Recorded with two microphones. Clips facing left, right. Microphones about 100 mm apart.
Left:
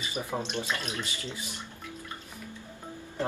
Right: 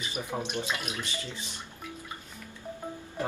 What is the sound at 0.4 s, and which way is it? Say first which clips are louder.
Speech: even; 10° right (ahead or behind).